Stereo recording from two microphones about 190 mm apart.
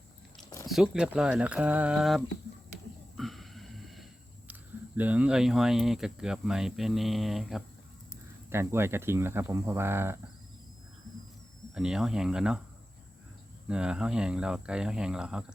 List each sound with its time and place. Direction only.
0.7 s speech: 5° right (ahead or behind)
3.2 s a sound: centre (ahead or behind)
4.9 s speech: 5° right (ahead or behind)
8.4 s speech: 15° right (ahead or behind)
11.7 s speech: 5° right (ahead or behind)
13.7 s speech: 5° right (ahead or behind)